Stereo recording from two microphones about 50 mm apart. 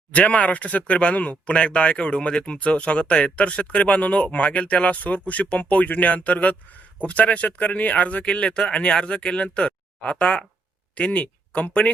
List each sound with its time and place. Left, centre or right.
0.1 s speech: left